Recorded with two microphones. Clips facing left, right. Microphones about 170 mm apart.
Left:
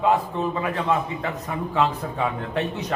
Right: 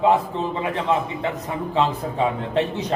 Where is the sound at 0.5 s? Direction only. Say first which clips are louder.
Right 2 dB; 20° right (ahead or behind).